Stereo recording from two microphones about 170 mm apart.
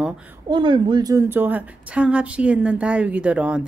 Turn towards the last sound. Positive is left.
turn(degrees=-5)  # may be behind; listen again after turning